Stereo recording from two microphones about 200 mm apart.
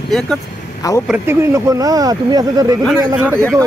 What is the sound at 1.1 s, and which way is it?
Speech, 15° right (ahead or behind).